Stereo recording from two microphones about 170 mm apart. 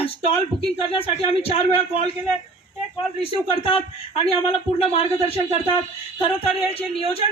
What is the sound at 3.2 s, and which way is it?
Speech, 35° left (ahead or behind).